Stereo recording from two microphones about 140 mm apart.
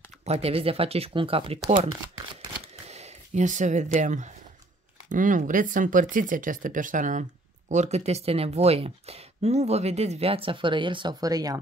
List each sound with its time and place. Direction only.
0.2 s speech: 45° right (ahead or behind)
2.9 s speech: 55° right (ahead or behind); by 11.6 s 25° right (ahead or behind)